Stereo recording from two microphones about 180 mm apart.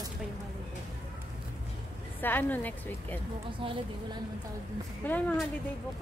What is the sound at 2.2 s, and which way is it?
Speech, 10° left (ahead or behind).